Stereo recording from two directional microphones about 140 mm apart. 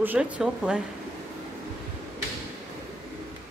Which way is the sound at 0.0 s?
10° right (ahead or behind).